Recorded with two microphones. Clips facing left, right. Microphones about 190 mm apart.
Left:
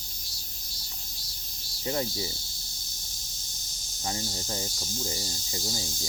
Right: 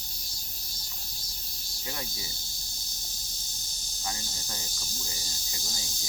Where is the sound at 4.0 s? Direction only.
30° left (ahead or behind).